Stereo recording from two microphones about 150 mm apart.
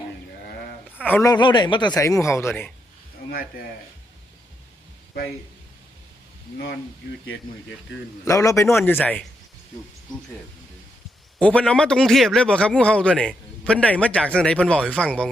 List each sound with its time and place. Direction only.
1.0 s speech: 10° left (ahead or behind)
1.3 s speech: 30° left (ahead or behind)
8.2 s a man's voice: 20° left (ahead or behind)
11.3 s a man's voice: 10° left (ahead or behind)